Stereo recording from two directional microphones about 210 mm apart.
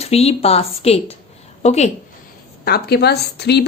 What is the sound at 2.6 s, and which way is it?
A woman's voice, 50° left (ahead or behind).